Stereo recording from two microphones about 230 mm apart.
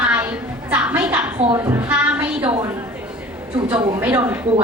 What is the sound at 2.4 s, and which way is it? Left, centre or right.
Speech, right.